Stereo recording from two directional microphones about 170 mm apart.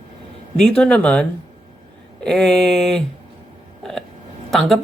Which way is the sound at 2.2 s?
5° left (ahead or behind).